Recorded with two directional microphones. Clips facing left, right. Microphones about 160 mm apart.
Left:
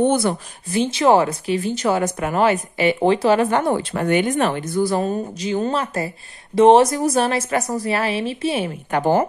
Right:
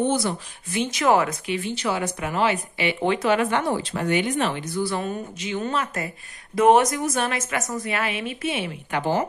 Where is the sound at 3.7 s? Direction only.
50° left (ahead or behind).